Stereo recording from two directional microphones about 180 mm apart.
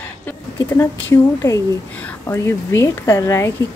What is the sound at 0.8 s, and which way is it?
A woman's voice, 15° left (ahead or behind).